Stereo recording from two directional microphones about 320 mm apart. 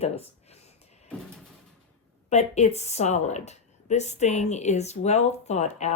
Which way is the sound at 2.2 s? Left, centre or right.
Left.